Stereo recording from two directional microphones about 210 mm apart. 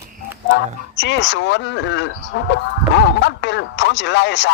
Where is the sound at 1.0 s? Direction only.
55° left (ahead or behind).